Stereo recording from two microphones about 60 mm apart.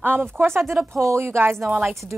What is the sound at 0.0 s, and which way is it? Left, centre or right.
Speech, right.